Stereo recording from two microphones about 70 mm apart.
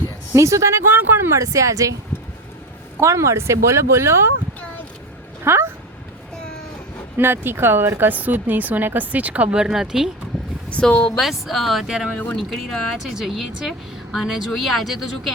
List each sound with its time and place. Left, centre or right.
0.3 s speech: right
1.4 s speech: right
3.0 s speech: right
5.5 s speech: right
7.2 s a woman's voice: right; by 10.1 s centre
10.7 s speech: centre
11.2 s speech: centre
12.1 s speech: left
12.4 s speech: centre